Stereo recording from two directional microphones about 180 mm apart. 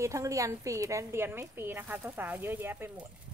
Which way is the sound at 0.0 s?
15° right (ahead or behind).